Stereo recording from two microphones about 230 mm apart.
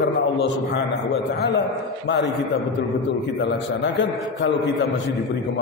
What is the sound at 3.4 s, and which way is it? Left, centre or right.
A man's voice, left.